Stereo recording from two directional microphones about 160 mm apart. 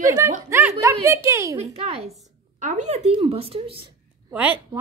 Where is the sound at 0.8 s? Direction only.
15° right (ahead or behind).